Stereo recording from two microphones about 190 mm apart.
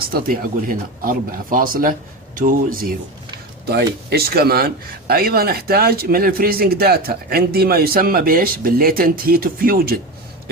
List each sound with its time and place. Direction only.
0.1 s a man's voice: 50° right (ahead or behind)
3.7 s a man's voice: 55° right (ahead or behind)